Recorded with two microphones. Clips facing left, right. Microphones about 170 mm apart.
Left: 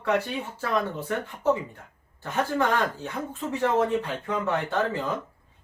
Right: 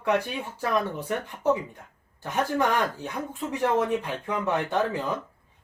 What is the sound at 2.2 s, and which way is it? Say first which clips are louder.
Speech: even; 15° right (ahead or behind).